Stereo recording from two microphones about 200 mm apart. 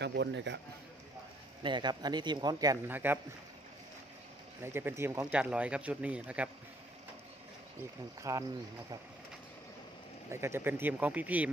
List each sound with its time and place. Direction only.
0.0 s a man's voice: 60° right (ahead or behind)
1.6 s speech: 20° right (ahead or behind)
4.6 s speech: 10° right (ahead or behind)
8.2 s speech: 15° right (ahead or behind)
10.3 s speech: 10° right (ahead or behind)